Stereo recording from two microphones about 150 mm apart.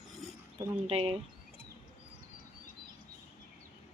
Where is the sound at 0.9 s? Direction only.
40° right (ahead or behind).